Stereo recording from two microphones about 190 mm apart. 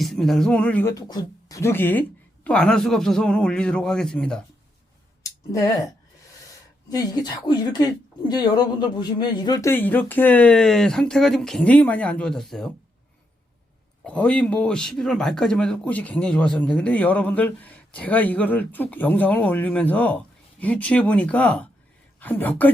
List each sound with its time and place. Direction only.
0.0 s speech: centre (ahead or behind)
5.2 s a sound: 15° left (ahead or behind)
6.9 s speech: 20° left (ahead or behind); by 12.7 s centre (ahead or behind)
14.0 s speech: 5° left (ahead or behind)